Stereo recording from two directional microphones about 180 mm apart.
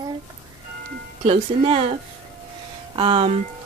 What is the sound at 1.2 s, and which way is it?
Speech, 30° right (ahead or behind).